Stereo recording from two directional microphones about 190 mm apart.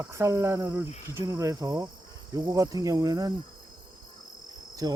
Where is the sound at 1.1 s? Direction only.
15° right (ahead or behind).